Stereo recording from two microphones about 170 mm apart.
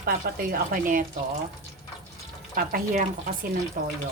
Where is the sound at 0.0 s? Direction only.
60° right (ahead or behind).